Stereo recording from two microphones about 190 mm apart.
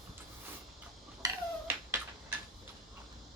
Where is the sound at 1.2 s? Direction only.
10° right (ahead or behind).